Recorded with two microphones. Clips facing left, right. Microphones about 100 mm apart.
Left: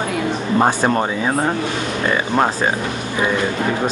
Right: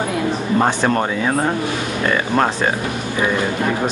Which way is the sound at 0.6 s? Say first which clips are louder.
Left 1 dB; 15° left (ahead or behind).